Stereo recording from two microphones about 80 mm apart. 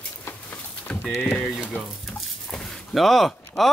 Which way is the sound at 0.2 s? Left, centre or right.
Left.